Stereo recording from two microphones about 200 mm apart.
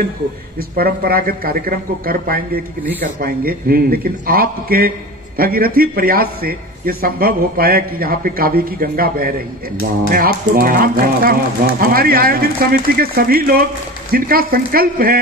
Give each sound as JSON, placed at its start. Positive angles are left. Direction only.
{"t": 0.6, "sound": "a man's voice", "side_deg": -50}